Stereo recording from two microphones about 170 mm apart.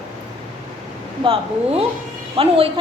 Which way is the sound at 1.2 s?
35° right (ahead or behind).